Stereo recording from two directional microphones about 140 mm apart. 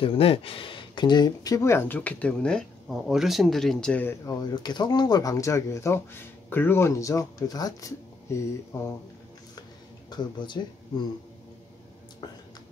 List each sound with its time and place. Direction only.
0.0 s speech: 45° left (ahead or behind); by 4.2 s 10° left (ahead or behind)
4.3 s speech: 30° left (ahead or behind)
9.6 s dishes: 30° left (ahead or behind)